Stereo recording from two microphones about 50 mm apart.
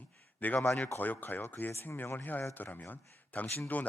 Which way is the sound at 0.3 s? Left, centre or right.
Left.